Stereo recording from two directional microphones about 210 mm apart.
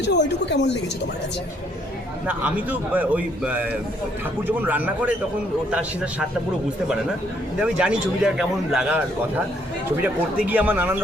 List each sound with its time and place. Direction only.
0.0 s speech: 55° left (ahead or behind)
2.2 s a man's voice: 5° right (ahead or behind)
7.6 s a man's voice: 5° right (ahead or behind)